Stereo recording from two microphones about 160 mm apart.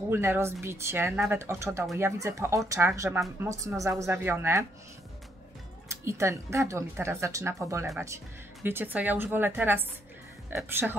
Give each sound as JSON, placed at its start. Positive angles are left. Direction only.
{"t": 0.1, "sound": "speech", "side_deg": -15}
{"t": 6.0, "sound": "speech", "side_deg": -20}